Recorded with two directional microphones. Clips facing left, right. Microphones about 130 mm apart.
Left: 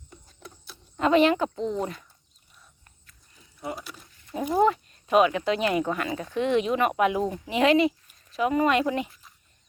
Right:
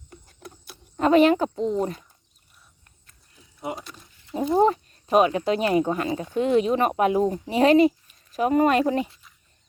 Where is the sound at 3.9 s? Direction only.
20° right (ahead or behind).